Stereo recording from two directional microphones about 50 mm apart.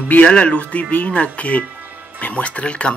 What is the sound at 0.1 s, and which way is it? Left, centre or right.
Speech, left.